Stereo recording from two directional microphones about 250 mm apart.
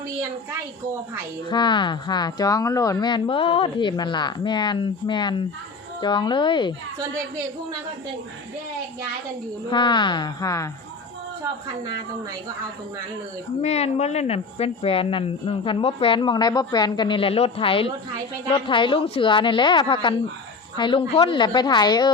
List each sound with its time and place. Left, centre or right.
1.5 s speech: centre
9.6 s speech: centre
13.6 s speech: left